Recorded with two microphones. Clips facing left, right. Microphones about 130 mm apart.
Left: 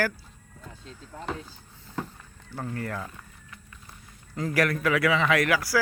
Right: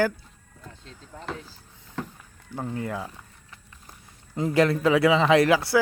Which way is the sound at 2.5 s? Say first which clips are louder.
Right 3 dB; 15° right (ahead or behind).